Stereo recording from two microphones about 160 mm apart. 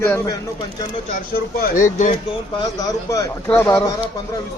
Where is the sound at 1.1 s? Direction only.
60° left (ahead or behind).